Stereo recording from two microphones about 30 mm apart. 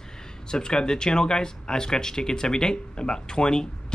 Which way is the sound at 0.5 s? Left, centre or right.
Left.